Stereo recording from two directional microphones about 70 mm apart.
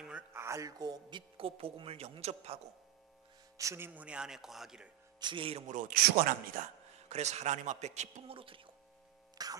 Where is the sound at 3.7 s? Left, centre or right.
Right.